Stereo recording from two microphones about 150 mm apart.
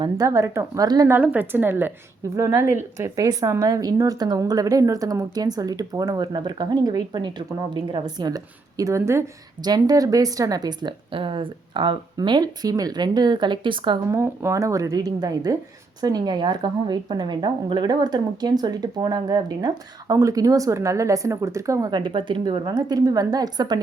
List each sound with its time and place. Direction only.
0.0 s a woman's voice: 25° right (ahead or behind)
1.1 s a woman's voice: 10° right (ahead or behind); by 14.0 s 30° right (ahead or behind)
14.1 s a woman's voice: 20° right (ahead or behind)